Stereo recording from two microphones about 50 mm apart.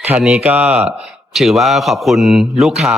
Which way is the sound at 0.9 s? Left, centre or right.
Centre.